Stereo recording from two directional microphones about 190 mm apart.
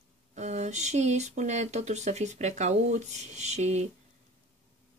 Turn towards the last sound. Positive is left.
turn(degrees=-35)  # may be behind; listen again after turning